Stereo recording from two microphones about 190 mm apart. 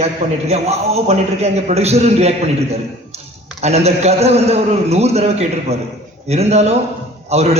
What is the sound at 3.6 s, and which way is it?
A man's voice, 35° right (ahead or behind).